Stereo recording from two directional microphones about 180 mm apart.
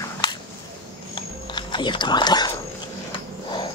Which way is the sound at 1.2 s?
25° left (ahead or behind).